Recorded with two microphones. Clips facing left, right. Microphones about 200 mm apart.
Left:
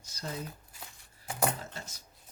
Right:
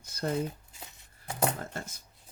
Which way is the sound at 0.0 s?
55° right (ahead or behind).